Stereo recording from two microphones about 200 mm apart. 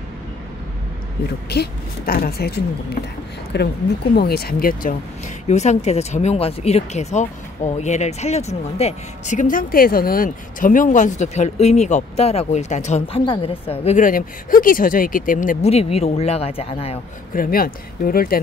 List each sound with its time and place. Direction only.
1.5 s a woman's voice: 50° left (ahead or behind)
5.5 s speech: 35° left (ahead or behind)
17.3 s a woman's voice: 45° left (ahead or behind)